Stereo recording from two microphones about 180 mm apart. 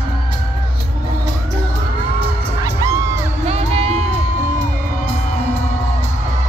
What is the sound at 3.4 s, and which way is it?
Music, 35° right (ahead or behind).